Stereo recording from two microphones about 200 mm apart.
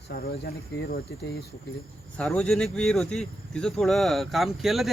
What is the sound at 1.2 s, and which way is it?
Speech, 55° left (ahead or behind).